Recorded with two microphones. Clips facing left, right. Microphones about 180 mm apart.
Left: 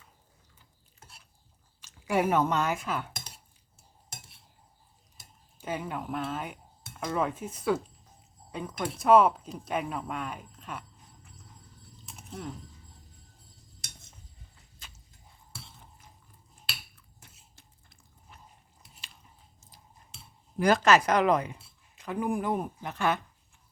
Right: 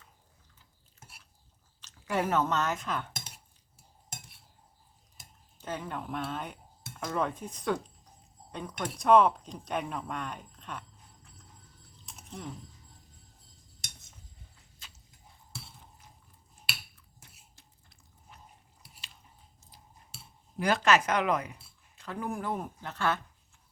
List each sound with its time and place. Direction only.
1.8 s speech: 10° left (ahead or behind)
5.5 s speech: 10° left (ahead or behind)
12.0 s chewing: centre (ahead or behind)
20.6 s speech: 40° left (ahead or behind)
21.9 s speech: 15° left (ahead or behind)